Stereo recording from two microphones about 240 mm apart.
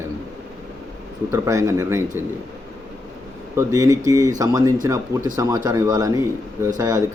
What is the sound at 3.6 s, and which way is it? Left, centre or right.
Speech, centre.